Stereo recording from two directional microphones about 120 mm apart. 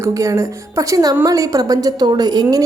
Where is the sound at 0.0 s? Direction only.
25° right (ahead or behind).